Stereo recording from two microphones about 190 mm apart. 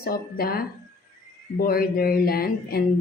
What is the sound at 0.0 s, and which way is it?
A woman's voice, 50° left (ahead or behind).